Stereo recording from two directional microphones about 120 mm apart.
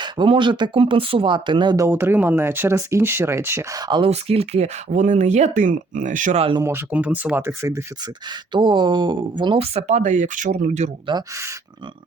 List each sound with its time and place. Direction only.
0.0 s speech: 40° right (ahead or behind)
1.7 s speech: 20° right (ahead or behind); by 4.1 s 40° right (ahead or behind)
4.1 s speech: 60° right (ahead or behind); by 6.4 s 90° right
6.6 s speech: 20° right (ahead or behind)
8.0 s speech: 40° right (ahead or behind)
9.7 s speech: 75° right (ahead or behind)